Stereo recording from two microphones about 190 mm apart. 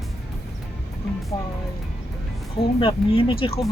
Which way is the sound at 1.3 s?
25° left (ahead or behind).